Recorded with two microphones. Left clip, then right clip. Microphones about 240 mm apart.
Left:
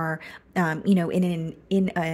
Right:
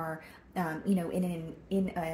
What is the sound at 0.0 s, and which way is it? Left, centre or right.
A woman's voice, left.